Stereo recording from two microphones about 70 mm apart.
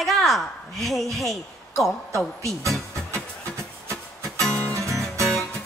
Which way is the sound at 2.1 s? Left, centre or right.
Right.